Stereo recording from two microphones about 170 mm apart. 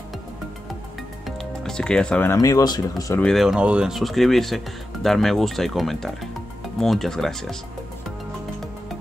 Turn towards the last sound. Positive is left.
turn(degrees=5)  # may be behind; listen again after turning